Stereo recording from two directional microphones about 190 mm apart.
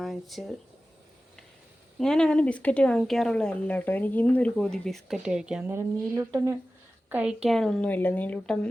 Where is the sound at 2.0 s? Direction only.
5° left (ahead or behind).